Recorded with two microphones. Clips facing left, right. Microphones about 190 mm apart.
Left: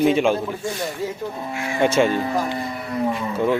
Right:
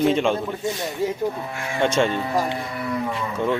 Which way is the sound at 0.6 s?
20° right (ahead or behind).